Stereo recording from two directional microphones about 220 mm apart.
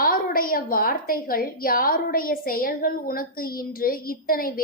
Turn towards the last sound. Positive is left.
turn(degrees=40)  # may be behind; listen again after turning